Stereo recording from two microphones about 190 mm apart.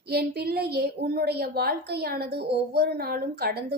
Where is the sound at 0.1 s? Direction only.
55° right (ahead or behind).